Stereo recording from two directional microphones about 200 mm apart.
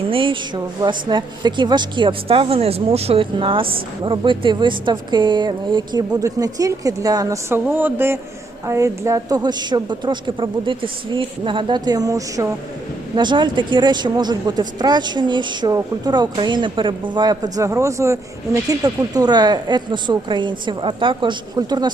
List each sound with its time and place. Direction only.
0.1 s a woman's voice: 25° right (ahead or behind)